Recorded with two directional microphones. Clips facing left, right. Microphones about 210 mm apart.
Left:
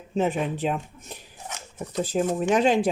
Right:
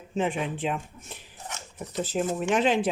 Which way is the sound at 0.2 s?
40° left (ahead or behind).